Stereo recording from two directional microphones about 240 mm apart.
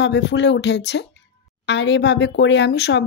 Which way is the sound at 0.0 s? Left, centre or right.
Left.